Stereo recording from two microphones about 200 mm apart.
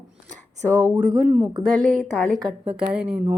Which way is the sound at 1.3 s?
15° right (ahead or behind).